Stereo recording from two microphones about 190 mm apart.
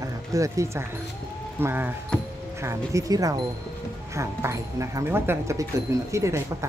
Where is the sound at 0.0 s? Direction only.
15° right (ahead or behind).